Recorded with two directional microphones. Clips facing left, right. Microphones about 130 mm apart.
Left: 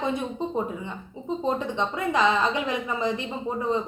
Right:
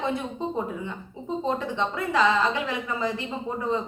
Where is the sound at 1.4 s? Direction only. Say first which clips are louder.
Left 1 dB; 20° left (ahead or behind).